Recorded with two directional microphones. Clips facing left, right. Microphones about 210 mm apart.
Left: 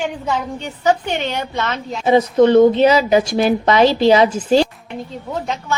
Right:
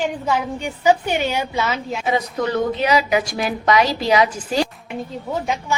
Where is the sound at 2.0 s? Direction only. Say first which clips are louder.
Left 11 dB; 30° left (ahead or behind).